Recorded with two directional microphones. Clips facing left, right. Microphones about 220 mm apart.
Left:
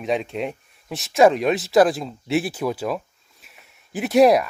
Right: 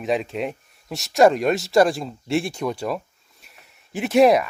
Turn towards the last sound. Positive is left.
turn(degrees=0)  # may be behind; listen again after turning